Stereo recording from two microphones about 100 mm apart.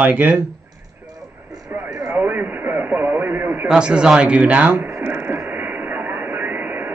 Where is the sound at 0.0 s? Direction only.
20° right (ahead or behind).